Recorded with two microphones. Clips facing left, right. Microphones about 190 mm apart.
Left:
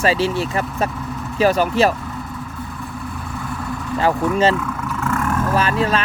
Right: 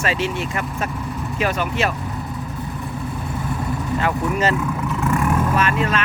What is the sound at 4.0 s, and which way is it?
Speech, 30° left (ahead or behind).